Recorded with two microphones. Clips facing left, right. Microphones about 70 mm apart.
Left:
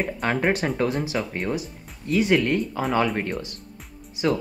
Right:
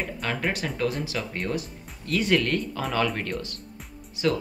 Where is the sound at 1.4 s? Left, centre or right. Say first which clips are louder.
Left 2 dB; centre.